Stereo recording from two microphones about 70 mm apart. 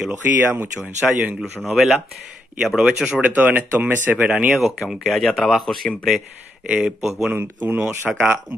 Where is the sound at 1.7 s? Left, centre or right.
Centre.